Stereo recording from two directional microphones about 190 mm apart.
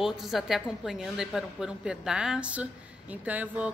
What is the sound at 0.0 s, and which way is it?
A woman's voice, centre (ahead or behind).